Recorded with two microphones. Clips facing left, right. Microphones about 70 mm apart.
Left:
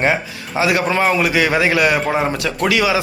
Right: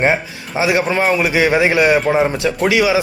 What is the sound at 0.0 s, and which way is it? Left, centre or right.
Speech, centre.